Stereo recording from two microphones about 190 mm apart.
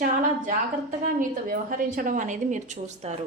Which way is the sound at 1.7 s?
45° right (ahead or behind).